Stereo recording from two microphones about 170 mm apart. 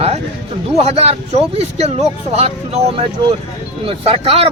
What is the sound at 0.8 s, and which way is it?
A man's voice, 40° right (ahead or behind).